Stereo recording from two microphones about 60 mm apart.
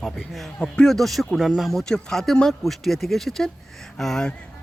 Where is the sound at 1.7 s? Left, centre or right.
Centre.